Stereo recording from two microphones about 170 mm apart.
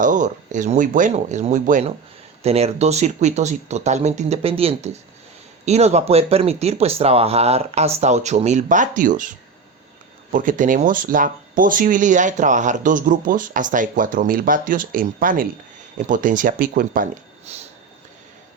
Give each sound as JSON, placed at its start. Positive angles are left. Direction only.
{"t": 0.0, "sound": "speech", "side_deg": -50}
{"t": 2.4, "sound": "speech", "side_deg": -40}
{"t": 10.3, "sound": "speech", "side_deg": -50}
{"t": 17.5, "sound": "speech", "side_deg": -40}